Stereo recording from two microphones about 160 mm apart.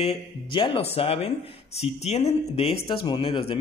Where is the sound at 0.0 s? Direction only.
35° left (ahead or behind).